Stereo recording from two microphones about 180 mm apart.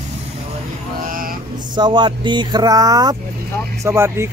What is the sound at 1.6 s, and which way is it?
Speech, 25° right (ahead or behind).